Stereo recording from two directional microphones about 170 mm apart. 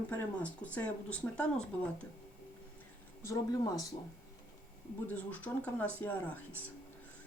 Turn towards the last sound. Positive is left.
turn(degrees=10)  # may be behind; listen again after turning